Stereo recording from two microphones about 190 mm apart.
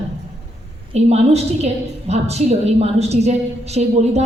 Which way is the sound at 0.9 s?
35° right (ahead or behind).